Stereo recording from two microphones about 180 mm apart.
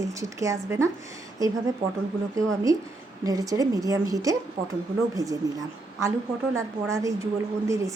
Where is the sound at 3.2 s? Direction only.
20° right (ahead or behind).